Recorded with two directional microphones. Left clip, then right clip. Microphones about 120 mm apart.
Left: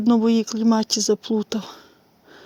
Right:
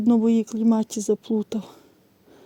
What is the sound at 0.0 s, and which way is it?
Speech, 25° right (ahead or behind).